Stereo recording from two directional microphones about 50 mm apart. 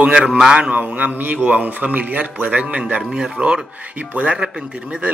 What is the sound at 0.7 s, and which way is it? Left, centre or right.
A man's voice, right.